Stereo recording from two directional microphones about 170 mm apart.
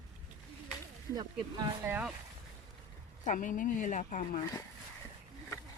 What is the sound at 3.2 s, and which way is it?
A woman's voice, 50° left (ahead or behind).